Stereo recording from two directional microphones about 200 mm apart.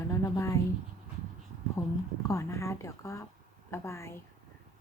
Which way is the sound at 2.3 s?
15° left (ahead or behind).